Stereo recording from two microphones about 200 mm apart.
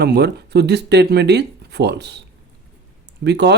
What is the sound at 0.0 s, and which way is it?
Speech, 55° right (ahead or behind).